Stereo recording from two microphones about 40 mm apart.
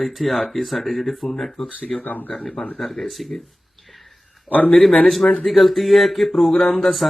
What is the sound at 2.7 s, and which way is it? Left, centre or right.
Speech, centre.